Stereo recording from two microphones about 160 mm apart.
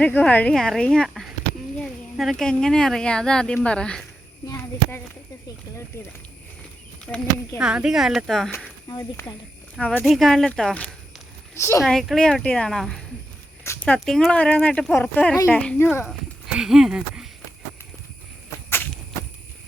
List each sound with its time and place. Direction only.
0.0 s speech: 10° left (ahead or behind)
7.1 s speech: 10° left (ahead or behind)
7.6 s speech: 5° right (ahead or behind)
8.9 s speech: 20° left (ahead or behind)
9.7 s speech: 10° left (ahead or behind)
11.5 s a woman's voice: 15° left (ahead or behind)
11.8 s speech: centre (ahead or behind)
16.6 s speech: 5° right (ahead or behind)